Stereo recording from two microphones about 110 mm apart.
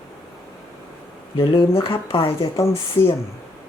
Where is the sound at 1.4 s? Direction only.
55° left (ahead or behind).